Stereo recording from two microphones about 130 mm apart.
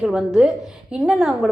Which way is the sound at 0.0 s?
5° right (ahead or behind).